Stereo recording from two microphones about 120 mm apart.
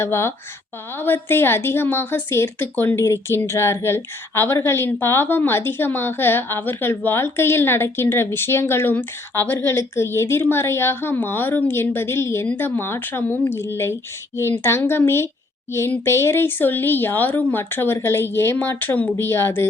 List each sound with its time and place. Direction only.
0.0 s a woman's voice: 20° left (ahead or behind)